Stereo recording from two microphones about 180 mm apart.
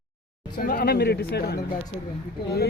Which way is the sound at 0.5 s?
55° left (ahead or behind).